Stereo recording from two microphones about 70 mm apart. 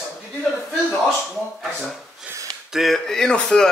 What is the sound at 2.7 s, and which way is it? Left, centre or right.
Speech, centre.